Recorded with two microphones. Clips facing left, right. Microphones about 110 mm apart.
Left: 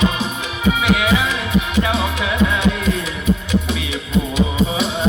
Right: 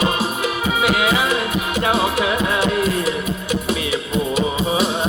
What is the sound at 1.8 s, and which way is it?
Music, 45° right (ahead or behind).